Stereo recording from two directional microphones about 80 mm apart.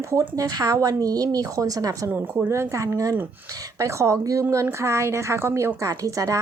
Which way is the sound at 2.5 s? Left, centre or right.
Right.